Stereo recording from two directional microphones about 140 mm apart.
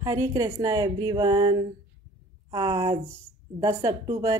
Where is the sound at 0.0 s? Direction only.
25° right (ahead or behind).